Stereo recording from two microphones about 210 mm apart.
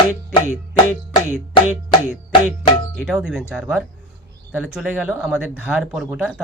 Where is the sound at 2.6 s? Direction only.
5° right (ahead or behind).